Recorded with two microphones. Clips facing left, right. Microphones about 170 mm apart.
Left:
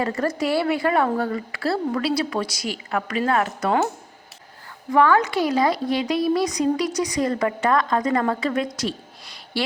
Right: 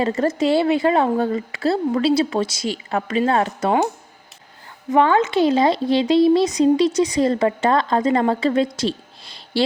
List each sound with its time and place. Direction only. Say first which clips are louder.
0.0 s speech: right 4 dB; 25° right (ahead or behind)
4.9 s speech: right 2 dB; 20° right (ahead or behind)